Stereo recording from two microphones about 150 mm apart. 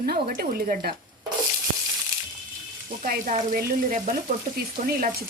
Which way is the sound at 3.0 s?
65° right (ahead or behind).